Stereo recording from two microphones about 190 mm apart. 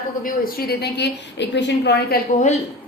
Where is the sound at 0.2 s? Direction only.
50° left (ahead or behind).